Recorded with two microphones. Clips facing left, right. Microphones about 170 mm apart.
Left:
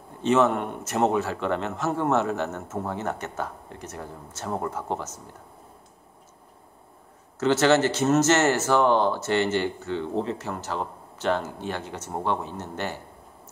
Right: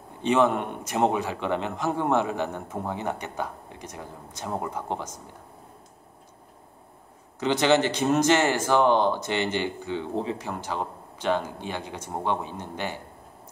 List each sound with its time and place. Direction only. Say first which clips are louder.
0.2 s a man's voice: left 1 dB; 10° right (ahead or behind)
7.3 s a man's voice: left 2 dB; 15° right (ahead or behind)